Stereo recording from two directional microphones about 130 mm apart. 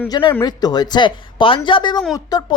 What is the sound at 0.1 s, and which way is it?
Speech, 35° left (ahead or behind).